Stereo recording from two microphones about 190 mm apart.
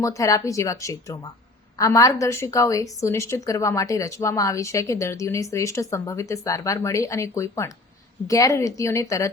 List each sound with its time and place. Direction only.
0.0 s a woman's voice: 15° left (ahead or behind)